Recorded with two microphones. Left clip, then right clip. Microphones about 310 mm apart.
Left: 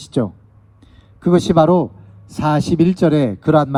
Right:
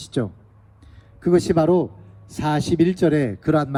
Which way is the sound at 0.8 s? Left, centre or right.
Left.